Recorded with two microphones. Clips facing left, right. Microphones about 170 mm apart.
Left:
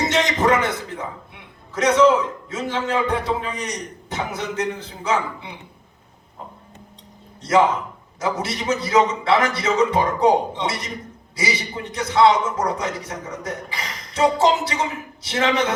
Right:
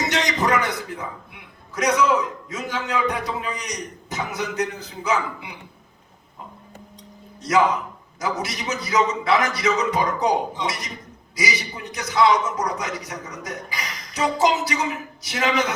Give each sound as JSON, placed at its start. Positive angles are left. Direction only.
{"t": 0.1, "sound": "a sound", "side_deg": 25}
{"t": 1.7, "sound": "a man's voice", "side_deg": 25}
{"t": 7.4, "sound": "a man's voice", "side_deg": 30}